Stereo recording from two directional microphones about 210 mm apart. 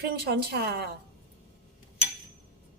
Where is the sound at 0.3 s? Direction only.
50° right (ahead or behind).